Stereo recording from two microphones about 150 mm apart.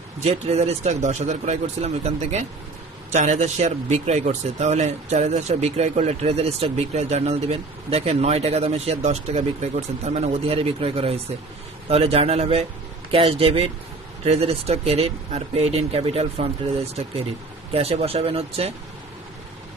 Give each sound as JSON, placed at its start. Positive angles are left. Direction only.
{"t": 0.2, "sound": "speech", "side_deg": -45}